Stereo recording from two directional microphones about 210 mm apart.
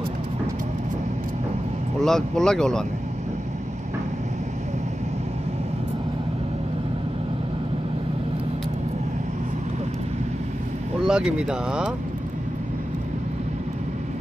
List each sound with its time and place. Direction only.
2.0 s speech: centre (ahead or behind)
11.1 s speech: 5° right (ahead or behind)